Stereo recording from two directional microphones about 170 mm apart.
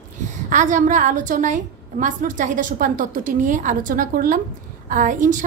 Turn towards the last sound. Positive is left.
turn(degrees=-50)  # may be behind; listen again after turning